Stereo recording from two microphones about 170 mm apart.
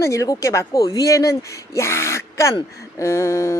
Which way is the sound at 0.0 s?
20° left (ahead or behind).